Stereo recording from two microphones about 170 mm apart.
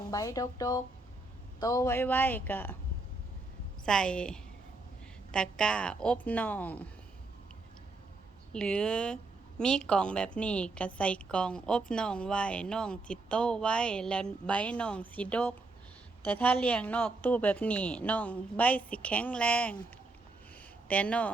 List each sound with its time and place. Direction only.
0.1 s a woman's voice: 20° left (ahead or behind)
3.8 s speech: 5° left (ahead or behind)
8.5 s a woman's voice: 5° left (ahead or behind)
20.8 s a woman's voice: 10° left (ahead or behind)